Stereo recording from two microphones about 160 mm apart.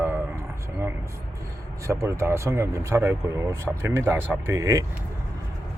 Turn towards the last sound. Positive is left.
turn(degrees=-20)  # may be behind; listen again after turning